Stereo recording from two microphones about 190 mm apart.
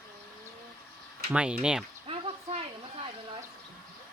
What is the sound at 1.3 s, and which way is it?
Speech, 5° right (ahead or behind).